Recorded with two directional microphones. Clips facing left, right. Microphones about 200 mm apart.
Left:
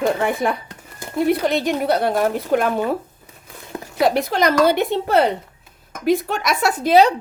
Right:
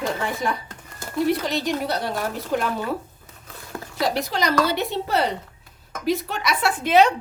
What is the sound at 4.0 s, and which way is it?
Speech, 55° left (ahead or behind).